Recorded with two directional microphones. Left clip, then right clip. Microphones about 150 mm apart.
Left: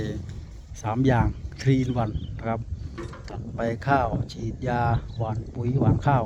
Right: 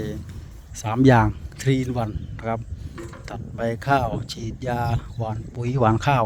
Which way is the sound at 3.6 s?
20° right (ahead or behind).